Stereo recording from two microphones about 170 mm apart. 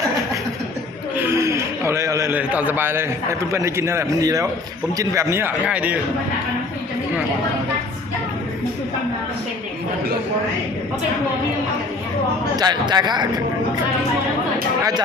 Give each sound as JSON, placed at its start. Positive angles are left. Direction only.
{"t": 1.1, "sound": "a sound", "side_deg": -15}
{"t": 3.5, "sound": "speech", "side_deg": -15}
{"t": 12.5, "sound": "a man's voice", "side_deg": -25}